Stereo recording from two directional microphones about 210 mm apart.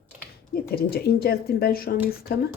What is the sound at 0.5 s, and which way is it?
A woman's voice, 45° left (ahead or behind).